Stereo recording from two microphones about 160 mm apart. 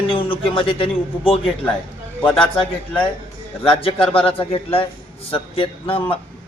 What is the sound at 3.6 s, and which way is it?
Speech, 35° left (ahead or behind).